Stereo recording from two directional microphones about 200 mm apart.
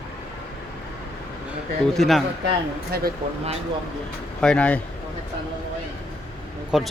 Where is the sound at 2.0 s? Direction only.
Centre (ahead or behind).